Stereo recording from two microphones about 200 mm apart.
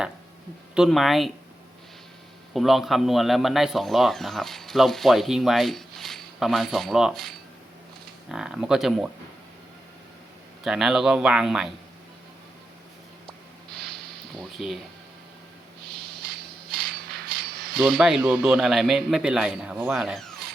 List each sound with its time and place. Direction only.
0.7 s speech: centre (ahead or behind)
2.5 s speech: centre (ahead or behind)
10.6 s speech: centre (ahead or behind)
13.7 s a sound: centre (ahead or behind)
17.1 s a sound: 50° right (ahead or behind)
17.8 s speech: centre (ahead or behind)